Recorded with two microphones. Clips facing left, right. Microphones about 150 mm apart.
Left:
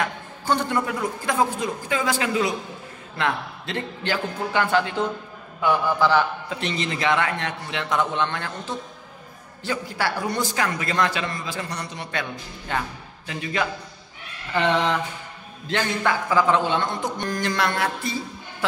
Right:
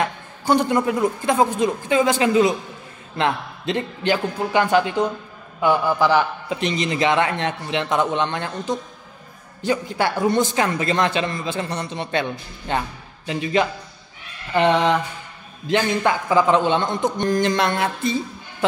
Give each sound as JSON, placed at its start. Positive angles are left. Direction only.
{"t": 0.5, "sound": "a man's voice", "side_deg": -15}